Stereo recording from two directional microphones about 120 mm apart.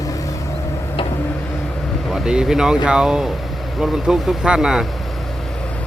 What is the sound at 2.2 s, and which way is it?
Speech, 5° right (ahead or behind).